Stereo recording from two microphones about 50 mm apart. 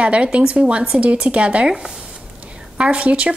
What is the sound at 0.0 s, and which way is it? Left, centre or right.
Speech, right.